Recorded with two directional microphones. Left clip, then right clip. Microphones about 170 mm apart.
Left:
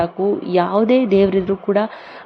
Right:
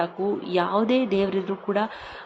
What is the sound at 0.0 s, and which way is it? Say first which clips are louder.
Speech: left 7 dB; 25° left (ahead or behind).